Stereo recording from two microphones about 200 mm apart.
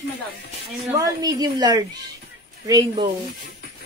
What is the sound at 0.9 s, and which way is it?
Speech, 15° right (ahead or behind).